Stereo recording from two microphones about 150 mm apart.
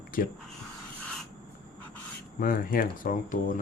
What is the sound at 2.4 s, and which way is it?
Speech, 70° left (ahead or behind).